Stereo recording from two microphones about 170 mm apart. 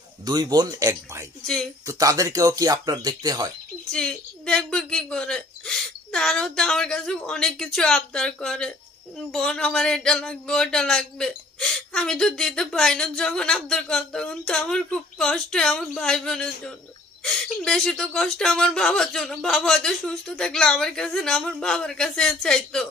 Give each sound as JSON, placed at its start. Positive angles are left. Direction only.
{"t": 0.2, "sound": "speech", "side_deg": -25}
{"t": 3.9, "sound": "speech", "side_deg": 5}